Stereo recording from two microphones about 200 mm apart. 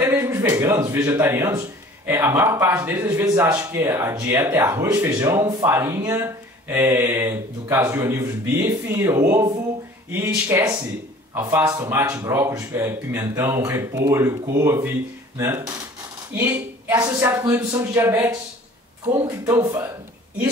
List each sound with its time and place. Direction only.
0.0 s speech: 15° right (ahead or behind)